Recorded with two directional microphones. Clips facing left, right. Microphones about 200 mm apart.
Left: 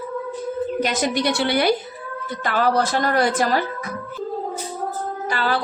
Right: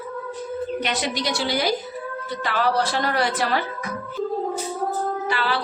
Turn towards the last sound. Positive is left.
turn(degrees=45)  # may be behind; listen again after turning